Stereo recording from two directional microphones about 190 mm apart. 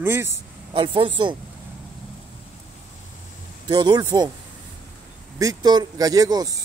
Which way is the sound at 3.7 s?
20° right (ahead or behind).